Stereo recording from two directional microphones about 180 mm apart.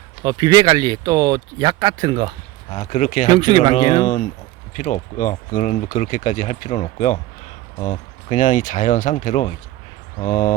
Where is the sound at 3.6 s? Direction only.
40° left (ahead or behind).